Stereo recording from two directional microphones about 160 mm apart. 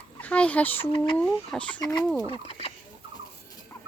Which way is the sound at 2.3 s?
35° left (ahead or behind).